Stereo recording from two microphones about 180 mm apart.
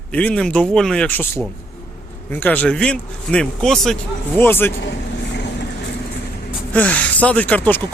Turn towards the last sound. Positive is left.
turn(degrees=10)  # may be behind; listen again after turning